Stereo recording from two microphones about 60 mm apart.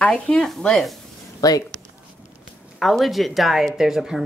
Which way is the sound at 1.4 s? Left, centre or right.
Left.